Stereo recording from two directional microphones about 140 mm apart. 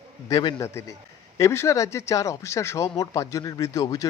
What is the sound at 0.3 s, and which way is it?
Speech, 25° left (ahead or behind).